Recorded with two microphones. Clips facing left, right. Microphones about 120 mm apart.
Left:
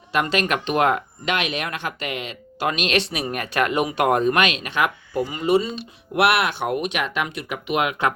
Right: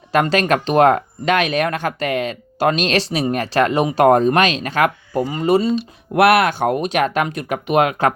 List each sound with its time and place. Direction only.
0.1 s speech: 40° right (ahead or behind)